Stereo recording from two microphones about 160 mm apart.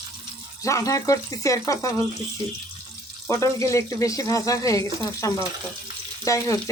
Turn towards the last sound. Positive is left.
turn(degrees=20)  # may be behind; listen again after turning